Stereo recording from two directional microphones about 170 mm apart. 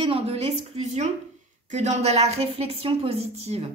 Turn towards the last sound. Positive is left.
turn(degrees=-35)  # may be behind; listen again after turning